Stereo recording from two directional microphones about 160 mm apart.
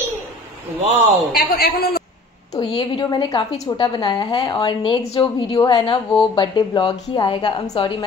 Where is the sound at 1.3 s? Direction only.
85° left.